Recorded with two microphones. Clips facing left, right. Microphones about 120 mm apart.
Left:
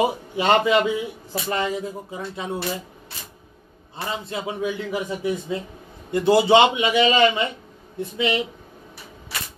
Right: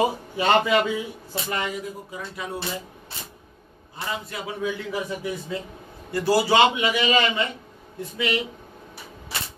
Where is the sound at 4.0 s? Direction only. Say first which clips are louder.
Left 3 dB; 25° left (ahead or behind).